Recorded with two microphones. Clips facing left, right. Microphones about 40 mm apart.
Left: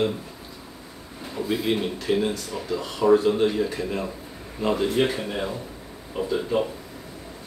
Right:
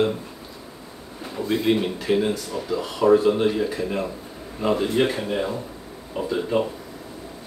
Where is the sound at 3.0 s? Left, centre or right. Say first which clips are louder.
Right 1 dB; centre.